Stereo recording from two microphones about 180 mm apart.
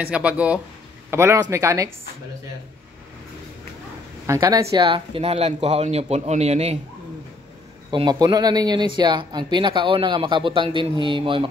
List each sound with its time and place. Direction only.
0.0 s a man's voice: 5° right (ahead or behind)
4.3 s a man's voice: 15° right (ahead or behind); by 6.8 s 35° right (ahead or behind)
7.9 s speech: 25° right (ahead or behind)